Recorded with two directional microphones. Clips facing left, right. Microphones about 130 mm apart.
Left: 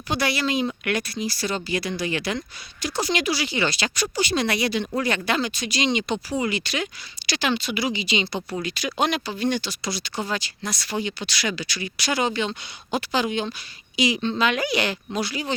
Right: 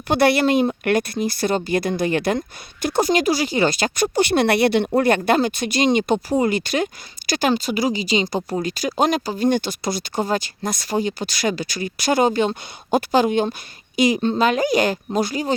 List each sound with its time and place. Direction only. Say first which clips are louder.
0.1 s a woman's voice: right 8 dB; 55° right (ahead or behind)
0.7 s speech: right 7 dB; 45° right (ahead or behind)